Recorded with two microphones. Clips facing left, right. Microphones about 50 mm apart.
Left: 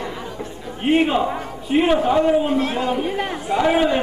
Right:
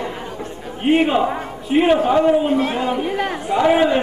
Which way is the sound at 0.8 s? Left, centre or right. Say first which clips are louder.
Right 2 dB; centre.